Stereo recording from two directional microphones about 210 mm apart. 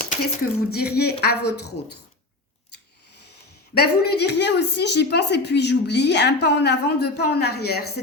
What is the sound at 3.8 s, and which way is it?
A woman's voice, 50° left (ahead or behind).